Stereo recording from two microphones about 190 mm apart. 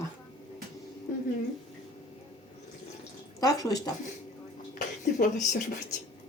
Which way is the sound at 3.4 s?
20° left (ahead or behind).